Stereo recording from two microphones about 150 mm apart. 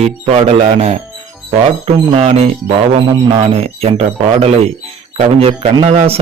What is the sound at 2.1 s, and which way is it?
Speech, 45° right (ahead or behind).